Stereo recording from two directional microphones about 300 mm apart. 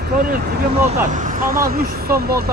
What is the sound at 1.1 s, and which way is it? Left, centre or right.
Speech, right.